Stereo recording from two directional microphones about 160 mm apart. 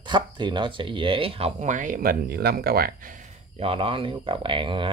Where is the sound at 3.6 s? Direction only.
35° right (ahead or behind).